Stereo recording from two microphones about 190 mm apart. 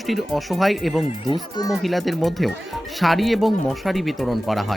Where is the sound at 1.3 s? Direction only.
20° left (ahead or behind).